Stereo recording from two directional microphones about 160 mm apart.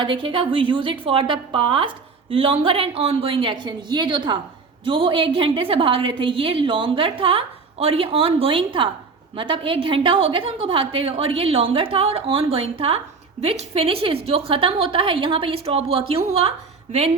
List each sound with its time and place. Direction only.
0.0 s a woman's voice: 30° right (ahead or behind)